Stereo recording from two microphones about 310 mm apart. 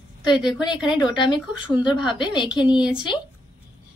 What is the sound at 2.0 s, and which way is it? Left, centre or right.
Speech, centre.